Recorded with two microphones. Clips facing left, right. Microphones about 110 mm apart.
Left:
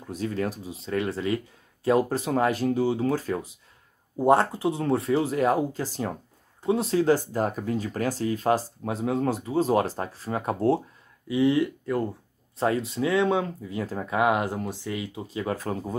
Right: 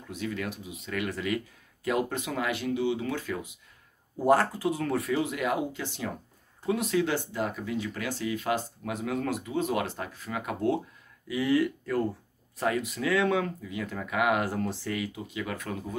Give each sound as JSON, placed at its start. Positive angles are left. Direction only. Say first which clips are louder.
{"t": 0.0, "sound": "speech", "louder": "left 5 dB", "side_deg": 35}
{"t": 4.2, "sound": "speech", "louder": "left 3 dB", "side_deg": 25}